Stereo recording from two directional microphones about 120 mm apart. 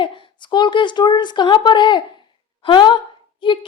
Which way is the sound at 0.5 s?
40° left (ahead or behind).